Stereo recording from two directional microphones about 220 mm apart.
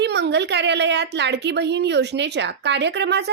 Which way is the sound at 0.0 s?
50° right (ahead or behind).